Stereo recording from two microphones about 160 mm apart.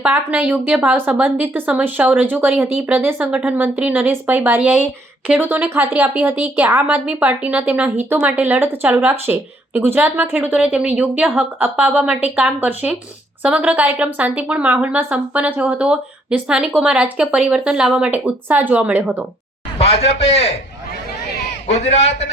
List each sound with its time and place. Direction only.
0.0 s speech: 10° right (ahead or behind)
19.8 s a man's voice: 40° left (ahead or behind)
21.7 s a man's voice: 45° left (ahead or behind)